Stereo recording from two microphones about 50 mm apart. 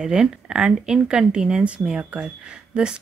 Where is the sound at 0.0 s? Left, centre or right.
Centre.